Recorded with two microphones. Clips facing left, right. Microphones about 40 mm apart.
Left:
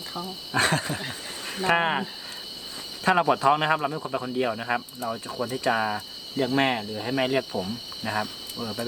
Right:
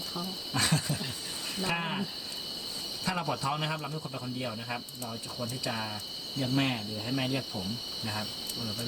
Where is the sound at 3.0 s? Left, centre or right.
Left.